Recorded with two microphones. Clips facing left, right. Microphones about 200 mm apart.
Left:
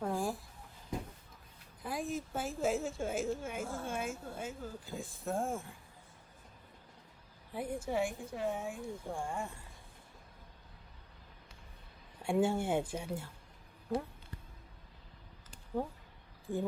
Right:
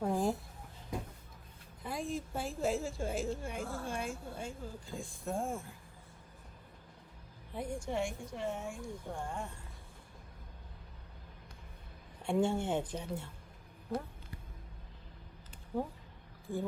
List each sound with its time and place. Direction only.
0.0 s a sound: 20° right (ahead or behind)
1.8 s a woman's voice: centre (ahead or behind)
7.5 s a woman's voice: 5° left (ahead or behind)
12.2 s speech: 5° left (ahead or behind)
15.7 s a woman's voice: centre (ahead or behind)